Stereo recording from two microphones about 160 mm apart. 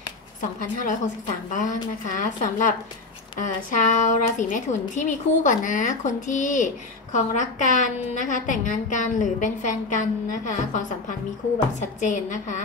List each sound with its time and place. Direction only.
0.4 s a woman's voice: 55° left (ahead or behind)
12.0 s a woman's voice: 50° left (ahead or behind)